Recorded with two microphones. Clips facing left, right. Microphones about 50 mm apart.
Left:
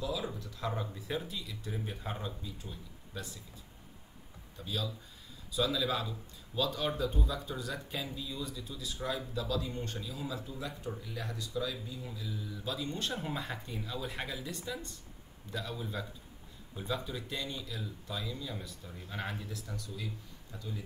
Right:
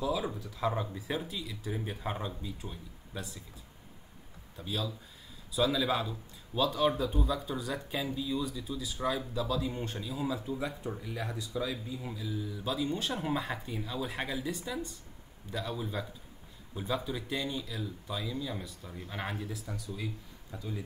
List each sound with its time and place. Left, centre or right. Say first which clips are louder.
0.0 s speech: right 4 dB; centre
1.7 s speech: right 4 dB; right
4.6 s speech: right 2 dB; centre
11.5 s speech: right 1 dB; right
12.2 s speech: right 4 dB; centre
18.9 s speech: right 2 dB; centre
20.5 s speech: right 4 dB; centre